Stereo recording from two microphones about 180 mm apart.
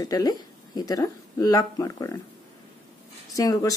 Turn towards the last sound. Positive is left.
turn(degrees=20)  # may be behind; listen again after turning